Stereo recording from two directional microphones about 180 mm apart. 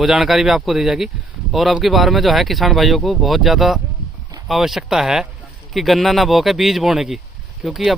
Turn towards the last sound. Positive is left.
turn(degrees=0)  # may be behind; listen again after turning